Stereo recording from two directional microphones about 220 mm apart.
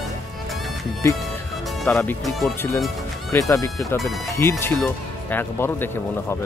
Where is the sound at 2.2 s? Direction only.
Centre (ahead or behind).